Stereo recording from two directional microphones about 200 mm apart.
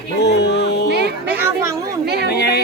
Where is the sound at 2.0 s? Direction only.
55° right (ahead or behind).